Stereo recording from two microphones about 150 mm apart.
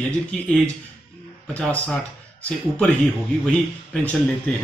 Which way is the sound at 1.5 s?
5° left (ahead or behind).